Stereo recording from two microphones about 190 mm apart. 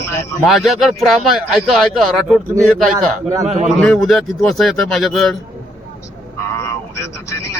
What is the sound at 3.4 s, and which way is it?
Speech, 40° right (ahead or behind).